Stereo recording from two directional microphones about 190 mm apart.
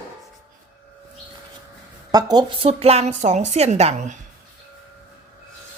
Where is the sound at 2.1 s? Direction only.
20° right (ahead or behind); by 4.1 s 35° right (ahead or behind).